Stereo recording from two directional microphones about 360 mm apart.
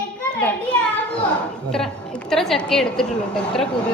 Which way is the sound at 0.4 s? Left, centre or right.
Centre.